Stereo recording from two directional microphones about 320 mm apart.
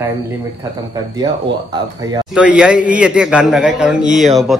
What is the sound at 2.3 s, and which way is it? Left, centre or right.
Speech, centre.